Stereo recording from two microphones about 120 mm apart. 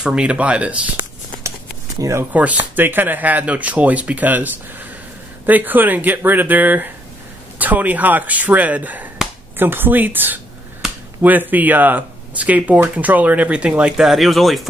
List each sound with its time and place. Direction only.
0.0 s speech: 10° right (ahead or behind)
2.0 s speech: 25° right (ahead or behind)
2.3 s speech: 15° right (ahead or behind)